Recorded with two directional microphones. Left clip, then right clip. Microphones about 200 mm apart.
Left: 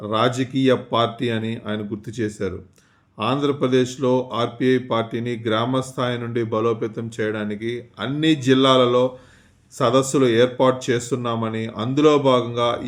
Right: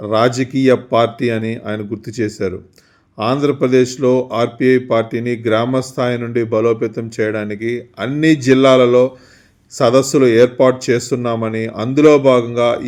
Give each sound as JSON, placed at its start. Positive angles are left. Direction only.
{"t": 0.0, "sound": "speech", "side_deg": -25}